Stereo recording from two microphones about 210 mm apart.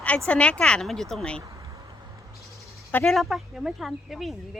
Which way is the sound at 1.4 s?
15° right (ahead or behind).